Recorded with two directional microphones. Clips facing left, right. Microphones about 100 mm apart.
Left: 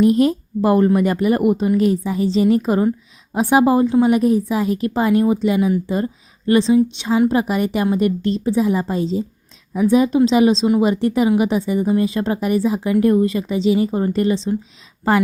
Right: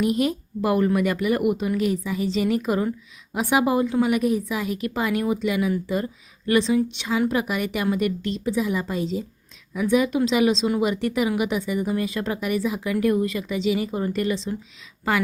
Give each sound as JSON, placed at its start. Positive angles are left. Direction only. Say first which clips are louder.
{"t": 0.0, "sound": "a woman's voice", "louder": "left 8 dB", "side_deg": 35}